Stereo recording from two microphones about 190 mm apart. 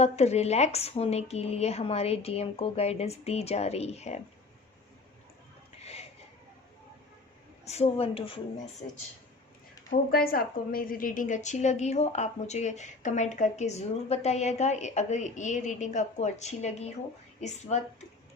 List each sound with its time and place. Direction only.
0.0 s a woman's voice: 35° left (ahead or behind)
5.8 s a sound: 35° left (ahead or behind)
7.6 s a woman's voice: 35° left (ahead or behind)
9.9 s a woman's voice: 50° left (ahead or behind)